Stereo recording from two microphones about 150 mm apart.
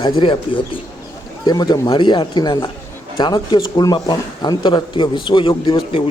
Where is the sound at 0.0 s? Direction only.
35° left (ahead or behind).